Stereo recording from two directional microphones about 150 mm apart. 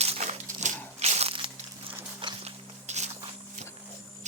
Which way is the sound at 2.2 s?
45° right (ahead or behind).